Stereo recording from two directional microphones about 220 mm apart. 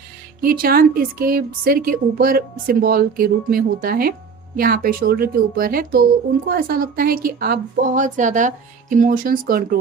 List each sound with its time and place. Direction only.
0.4 s a woman's voice: 40° right (ahead or behind)